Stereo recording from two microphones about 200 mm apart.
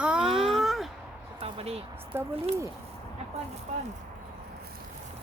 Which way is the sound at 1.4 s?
30° right (ahead or behind).